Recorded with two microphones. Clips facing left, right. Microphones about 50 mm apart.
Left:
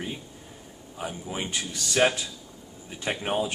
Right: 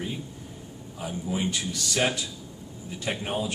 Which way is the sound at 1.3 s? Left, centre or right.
Left.